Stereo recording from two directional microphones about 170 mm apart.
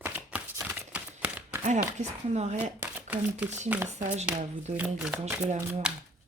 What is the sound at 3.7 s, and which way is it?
Speech, 10° right (ahead or behind).